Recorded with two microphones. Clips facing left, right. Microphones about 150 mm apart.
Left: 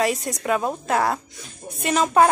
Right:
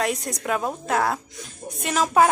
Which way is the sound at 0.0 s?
Centre (ahead or behind).